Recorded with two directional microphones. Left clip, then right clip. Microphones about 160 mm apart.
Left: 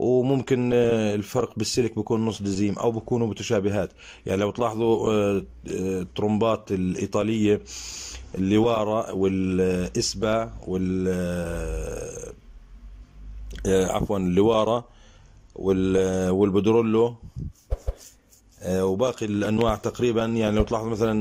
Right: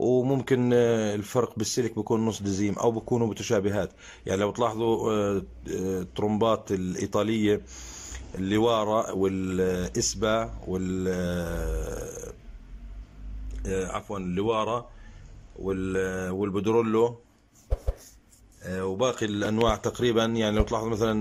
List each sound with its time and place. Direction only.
0.0 s speech: 5° left (ahead or behind)
13.6 s speech: 25° left (ahead or behind)
17.6 s a sound: centre (ahead or behind)
18.6 s speech: 20° left (ahead or behind); by 21.2 s 5° left (ahead or behind)